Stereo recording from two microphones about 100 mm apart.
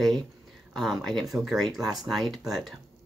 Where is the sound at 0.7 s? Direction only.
5° left (ahead or behind).